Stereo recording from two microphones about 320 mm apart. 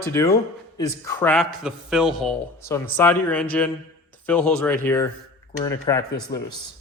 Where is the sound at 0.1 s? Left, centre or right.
Centre.